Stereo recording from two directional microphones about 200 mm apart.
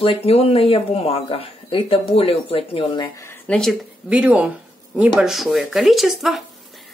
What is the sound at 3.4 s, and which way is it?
Speech, 5° left (ahead or behind).